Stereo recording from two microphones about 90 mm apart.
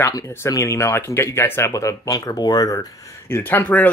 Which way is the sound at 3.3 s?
20° left (ahead or behind).